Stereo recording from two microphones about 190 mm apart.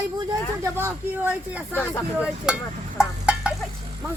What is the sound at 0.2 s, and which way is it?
Speech, 15° right (ahead or behind).